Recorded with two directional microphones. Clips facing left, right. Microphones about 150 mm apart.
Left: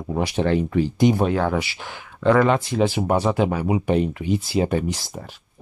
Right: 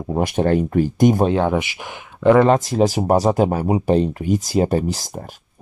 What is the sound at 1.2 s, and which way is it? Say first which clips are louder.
Speech: right 3 dB; 20° right (ahead or behind).